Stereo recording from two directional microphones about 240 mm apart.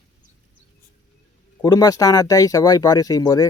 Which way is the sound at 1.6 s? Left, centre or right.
Centre.